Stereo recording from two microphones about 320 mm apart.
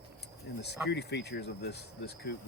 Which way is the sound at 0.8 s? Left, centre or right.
Left.